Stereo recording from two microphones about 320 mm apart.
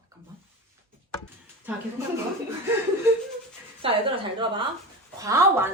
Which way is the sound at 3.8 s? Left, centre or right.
Centre.